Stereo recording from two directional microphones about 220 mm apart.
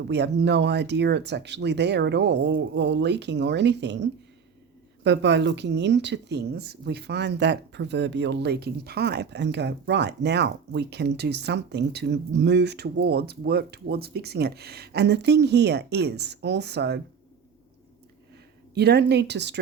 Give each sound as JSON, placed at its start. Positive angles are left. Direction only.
{"t": 0.1, "sound": "speech", "side_deg": -50}
{"t": 18.7, "sound": "speech", "side_deg": -50}